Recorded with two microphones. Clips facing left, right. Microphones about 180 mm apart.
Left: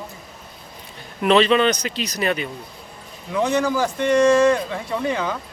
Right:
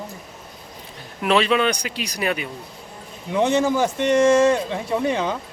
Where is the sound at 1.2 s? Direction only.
5° right (ahead or behind).